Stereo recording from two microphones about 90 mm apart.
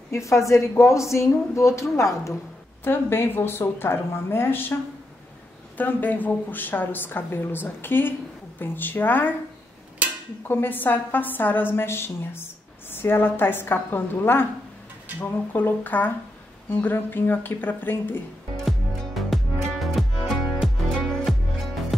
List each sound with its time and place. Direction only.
0.1 s a woman's voice: 35° left (ahead or behind)
5.8 s a woman's voice: 20° left (ahead or behind)
10.5 s a woman's voice: 25° left (ahead or behind)
18.7 s music: centre (ahead or behind)